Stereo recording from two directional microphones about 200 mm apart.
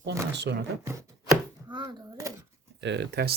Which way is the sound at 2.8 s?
60° right (ahead or behind).